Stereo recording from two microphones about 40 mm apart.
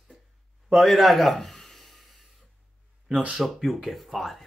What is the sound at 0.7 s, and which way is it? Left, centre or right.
Speech, centre.